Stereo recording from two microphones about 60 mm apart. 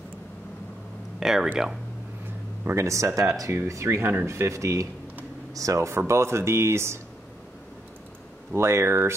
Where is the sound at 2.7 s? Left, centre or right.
Right.